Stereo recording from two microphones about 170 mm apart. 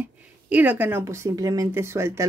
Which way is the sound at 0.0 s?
10° right (ahead or behind).